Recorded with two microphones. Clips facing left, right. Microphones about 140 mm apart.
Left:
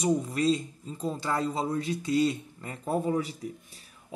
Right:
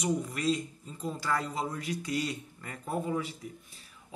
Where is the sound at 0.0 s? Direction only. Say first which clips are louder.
Left 5 dB; 30° left (ahead or behind).